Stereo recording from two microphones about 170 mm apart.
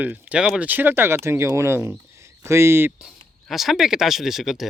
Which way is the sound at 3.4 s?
Centre (ahead or behind).